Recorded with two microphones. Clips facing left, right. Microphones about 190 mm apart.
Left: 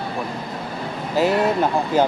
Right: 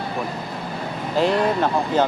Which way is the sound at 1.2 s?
5° left (ahead or behind).